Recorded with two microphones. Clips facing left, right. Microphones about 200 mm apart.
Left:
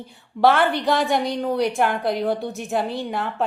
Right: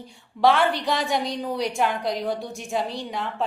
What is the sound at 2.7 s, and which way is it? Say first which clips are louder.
Speech: left 3 dB; 5° left (ahead or behind).